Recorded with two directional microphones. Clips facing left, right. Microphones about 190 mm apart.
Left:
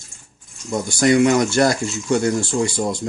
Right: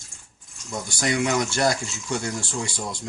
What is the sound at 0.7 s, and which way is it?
Speech, 50° left (ahead or behind).